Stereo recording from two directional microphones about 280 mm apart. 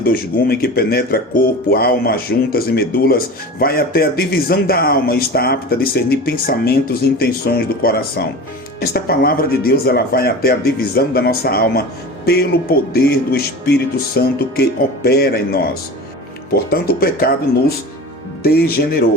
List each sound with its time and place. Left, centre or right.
0.0 s speech: left
18.4 s speech: left